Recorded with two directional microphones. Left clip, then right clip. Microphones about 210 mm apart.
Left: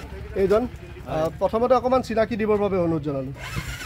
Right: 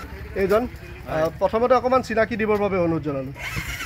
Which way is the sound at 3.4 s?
40° left (ahead or behind).